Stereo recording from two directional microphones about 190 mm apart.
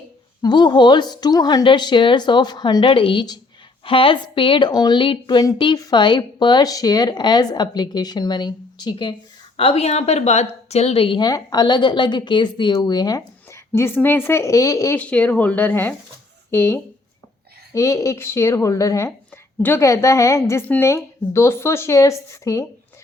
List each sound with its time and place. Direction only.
0.4 s a woman's voice: 25° left (ahead or behind)